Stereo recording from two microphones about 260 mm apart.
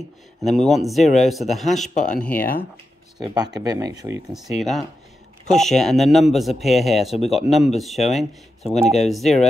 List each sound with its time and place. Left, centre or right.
0.5 s speech: centre
2.0 s speech: left
3.2 s speech: centre
4.3 s speech: centre